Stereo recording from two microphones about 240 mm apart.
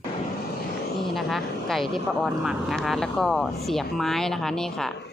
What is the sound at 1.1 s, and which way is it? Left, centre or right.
Speech, centre.